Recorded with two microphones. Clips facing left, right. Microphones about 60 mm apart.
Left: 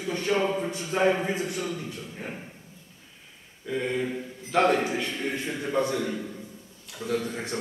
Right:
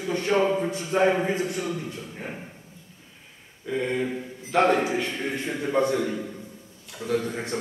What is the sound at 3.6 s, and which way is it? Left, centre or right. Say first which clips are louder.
A man's voice: right 2 dB; centre.